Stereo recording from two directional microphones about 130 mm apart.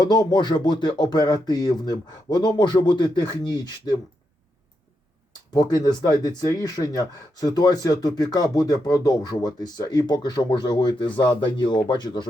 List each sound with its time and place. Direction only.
0.0 s speech: 30° left (ahead or behind)
5.5 s speech: 30° left (ahead or behind)